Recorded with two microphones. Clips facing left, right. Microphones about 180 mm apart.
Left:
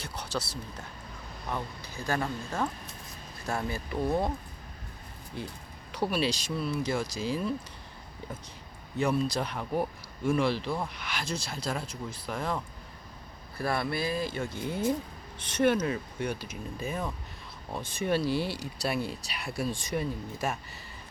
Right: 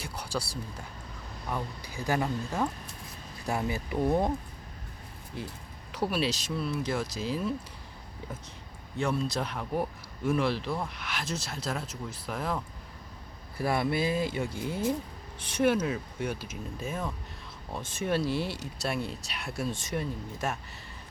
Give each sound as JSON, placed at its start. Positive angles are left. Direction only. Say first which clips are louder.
{"t": 0.0, "sound": "speech", "louder": "even", "side_deg": -10}
{"t": 3.7, "sound": "speech", "louder": "right 3 dB", "side_deg": -15}
{"t": 5.3, "sound": "speech", "louder": "even", "side_deg": 0}
{"t": 9.0, "sound": "speech", "louder": "left 2 dB", "side_deg": 0}
{"t": 13.6, "sound": "speech", "louder": "right 2 dB", "side_deg": -15}
{"t": 14.6, "sound": "speech", "louder": "left 2 dB", "side_deg": -5}